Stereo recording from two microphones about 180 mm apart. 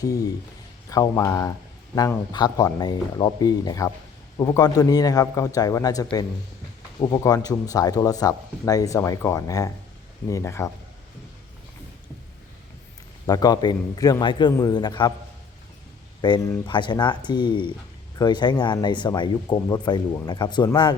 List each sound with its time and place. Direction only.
0.0 s speech: 20° left (ahead or behind)
13.2 s speech: 20° left (ahead or behind)
16.2 s speech: 20° left (ahead or behind)